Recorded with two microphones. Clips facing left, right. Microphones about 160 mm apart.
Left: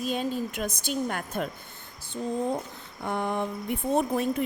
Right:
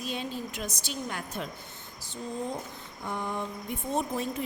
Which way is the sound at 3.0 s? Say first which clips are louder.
Left 5 dB; 65° left (ahead or behind).